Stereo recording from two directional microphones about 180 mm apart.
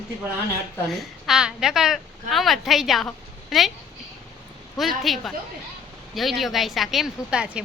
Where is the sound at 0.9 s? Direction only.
Centre (ahead or behind).